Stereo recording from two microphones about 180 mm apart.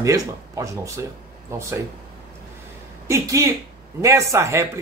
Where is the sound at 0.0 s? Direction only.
20° right (ahead or behind).